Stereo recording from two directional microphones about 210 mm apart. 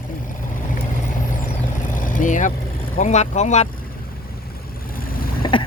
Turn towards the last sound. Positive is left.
turn(degrees=25)  # may be behind; listen again after turning